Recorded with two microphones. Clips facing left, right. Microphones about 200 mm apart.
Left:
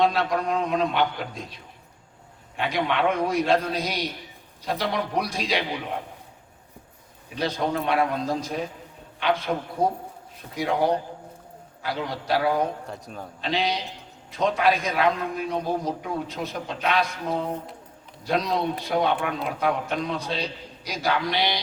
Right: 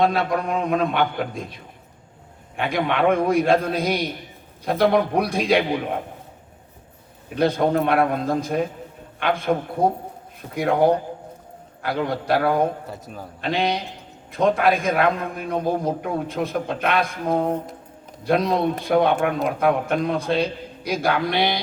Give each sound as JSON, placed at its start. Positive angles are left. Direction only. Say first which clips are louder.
{"t": 0.0, "sound": "a man's voice", "louder": "right 2 dB", "side_deg": -55}
{"t": 7.3, "sound": "a man's voice", "louder": "right 7 dB", "side_deg": -55}
{"t": 12.9, "sound": "a man's voice", "louder": "right 1 dB", "side_deg": -5}
{"t": 13.4, "sound": "a man's voice", "louder": "right 3 dB", "side_deg": -55}